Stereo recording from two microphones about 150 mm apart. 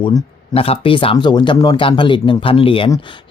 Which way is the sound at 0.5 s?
40° left (ahead or behind).